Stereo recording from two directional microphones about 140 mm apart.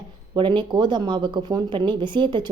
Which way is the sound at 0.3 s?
35° right (ahead or behind).